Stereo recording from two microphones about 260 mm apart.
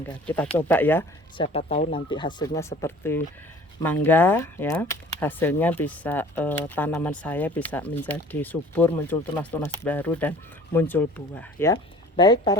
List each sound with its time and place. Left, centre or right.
0.0 s speech: centre
1.4 s speech: left